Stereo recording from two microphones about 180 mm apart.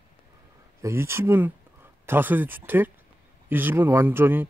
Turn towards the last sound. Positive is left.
turn(degrees=-10)  # may be behind; listen again after turning